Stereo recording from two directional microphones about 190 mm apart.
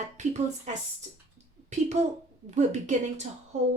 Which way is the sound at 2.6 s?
35° right (ahead or behind).